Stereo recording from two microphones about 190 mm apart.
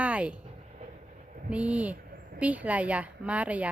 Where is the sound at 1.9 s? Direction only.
50° right (ahead or behind).